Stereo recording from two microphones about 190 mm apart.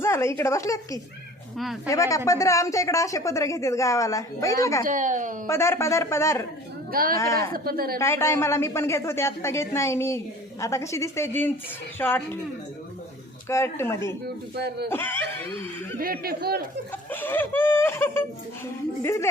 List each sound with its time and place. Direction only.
0.0 s a woman's voice: 15° left (ahead or behind)
1.5 s speech: centre (ahead or behind)
1.9 s a woman's voice: 15° left (ahead or behind)
4.8 s speech: 45° right (ahead or behind)
5.5 s a woman's voice: 15° left (ahead or behind)
6.9 s speech: 50° right (ahead or behind)
7.2 s a woman's voice: 15° left (ahead or behind)
7.5 s speech: 50° right (ahead or behind)
7.9 s a woman's voice: 15° left (ahead or behind)
13.5 s a woman's voice: 15° left (ahead or behind)
14.5 s speech: 60° right (ahead or behind)
14.8 s a woman's voice: 10° left (ahead or behind)
16.0 s speech: 50° right (ahead or behind)
17.1 s a woman's voice: 10° left (ahead or behind)